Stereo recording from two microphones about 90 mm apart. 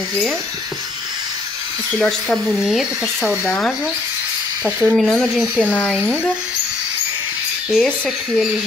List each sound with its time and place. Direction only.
2.0 s speech: 5° left (ahead or behind)
3.3 s speech: 20° left (ahead or behind)
4.8 s speech: 5° left (ahead or behind)
5.7 s speech: 15° left (ahead or behind)
7.7 s speech: 5° right (ahead or behind)